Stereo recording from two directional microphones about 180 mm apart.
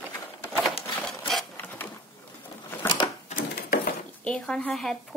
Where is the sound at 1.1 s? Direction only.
Centre (ahead or behind).